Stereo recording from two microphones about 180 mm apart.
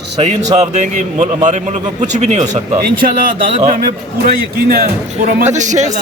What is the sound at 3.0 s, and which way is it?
Speech, 50° right (ahead or behind).